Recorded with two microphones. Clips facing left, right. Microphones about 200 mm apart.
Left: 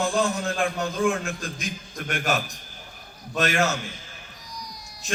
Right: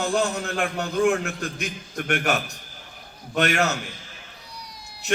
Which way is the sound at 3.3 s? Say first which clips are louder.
Right 2 dB; 65° right (ahead or behind).